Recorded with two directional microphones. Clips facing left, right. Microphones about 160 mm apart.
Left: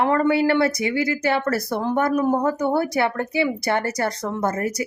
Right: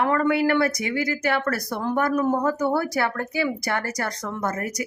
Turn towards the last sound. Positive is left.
turn(degrees=30)  # may be behind; listen again after turning